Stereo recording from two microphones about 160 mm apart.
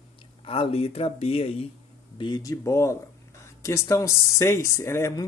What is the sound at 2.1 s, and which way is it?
Speech, 25° left (ahead or behind).